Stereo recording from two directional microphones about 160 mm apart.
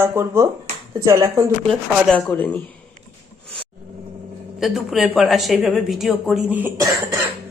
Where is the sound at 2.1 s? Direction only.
10° left (ahead or behind).